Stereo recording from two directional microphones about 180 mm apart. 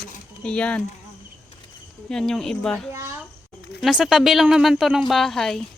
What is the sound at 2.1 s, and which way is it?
Speech, 5° left (ahead or behind).